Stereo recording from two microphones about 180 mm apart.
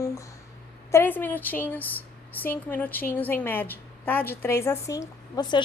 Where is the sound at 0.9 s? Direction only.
15° left (ahead or behind).